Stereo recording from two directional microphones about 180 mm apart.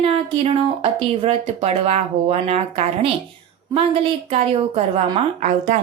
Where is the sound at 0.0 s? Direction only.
35° right (ahead or behind).